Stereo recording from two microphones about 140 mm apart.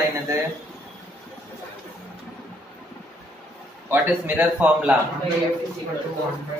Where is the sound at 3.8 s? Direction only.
15° right (ahead or behind).